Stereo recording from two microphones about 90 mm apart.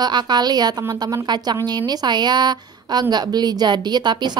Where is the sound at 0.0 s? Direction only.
55° right (ahead or behind).